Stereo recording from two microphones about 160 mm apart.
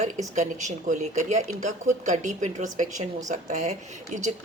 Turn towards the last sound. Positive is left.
turn(degrees=-45)  # may be behind; listen again after turning